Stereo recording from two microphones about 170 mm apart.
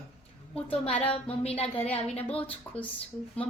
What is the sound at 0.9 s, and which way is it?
Speech, 10° left (ahead or behind).